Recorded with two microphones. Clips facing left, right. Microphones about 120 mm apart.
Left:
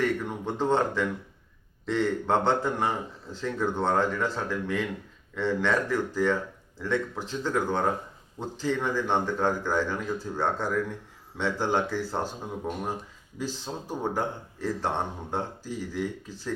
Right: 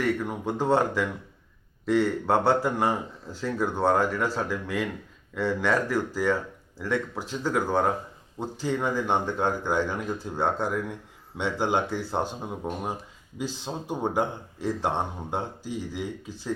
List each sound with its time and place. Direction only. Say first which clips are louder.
0.0 s speech: right 1 dB; 10° right (ahead or behind)